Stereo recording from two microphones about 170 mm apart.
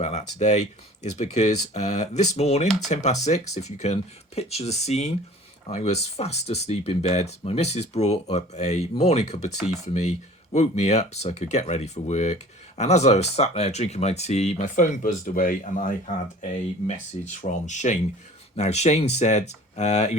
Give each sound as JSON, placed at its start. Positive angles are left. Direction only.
{"t": 0.0, "sound": "speech", "side_deg": 45}